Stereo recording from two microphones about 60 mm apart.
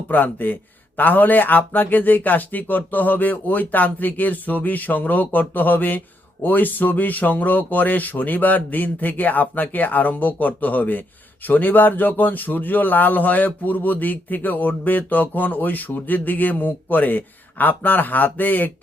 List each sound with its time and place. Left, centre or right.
0.1 s a man's voice: left